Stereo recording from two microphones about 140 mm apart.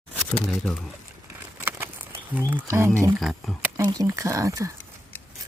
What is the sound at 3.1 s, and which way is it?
Speech, centre (ahead or behind).